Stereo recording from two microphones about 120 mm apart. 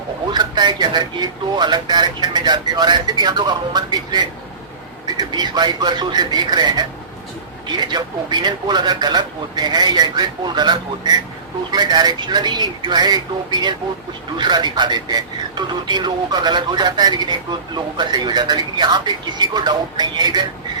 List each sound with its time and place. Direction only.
0.3 s speech: 35° right (ahead or behind)